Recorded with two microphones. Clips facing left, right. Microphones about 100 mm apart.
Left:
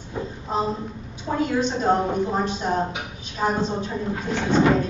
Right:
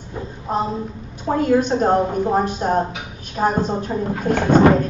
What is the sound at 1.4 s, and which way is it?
A woman's voice, 50° right (ahead or behind).